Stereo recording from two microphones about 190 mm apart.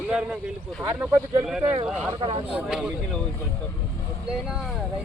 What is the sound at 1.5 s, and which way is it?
Speech, 5° right (ahead or behind).